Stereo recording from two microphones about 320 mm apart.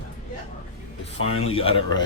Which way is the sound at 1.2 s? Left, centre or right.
Centre.